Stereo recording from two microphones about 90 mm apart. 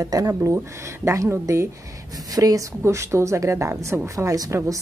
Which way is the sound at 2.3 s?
45° right (ahead or behind).